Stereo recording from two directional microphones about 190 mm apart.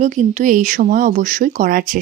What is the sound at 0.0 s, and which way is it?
Speech, 40° right (ahead or behind).